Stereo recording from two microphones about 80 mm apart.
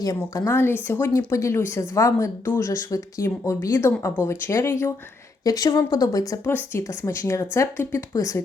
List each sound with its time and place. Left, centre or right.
0.3 s a woman's voice: left
1.3 s a woman's voice: left
5.4 s a woman's voice: left
6.1 s a woman's voice: left
6.5 s a woman's voice: left
6.8 s a woman's voice: left